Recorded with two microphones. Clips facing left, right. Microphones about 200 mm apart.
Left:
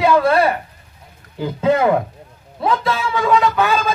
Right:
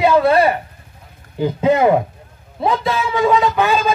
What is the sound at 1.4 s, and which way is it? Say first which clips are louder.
Speech: right 2 dB; 20° right (ahead or behind).